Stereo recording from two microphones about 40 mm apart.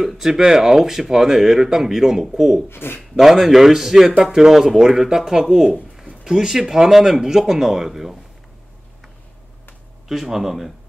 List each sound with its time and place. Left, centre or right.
0.0 s speech: centre
2.7 s speech: left
3.2 s speech: centre
10.0 s speech: centre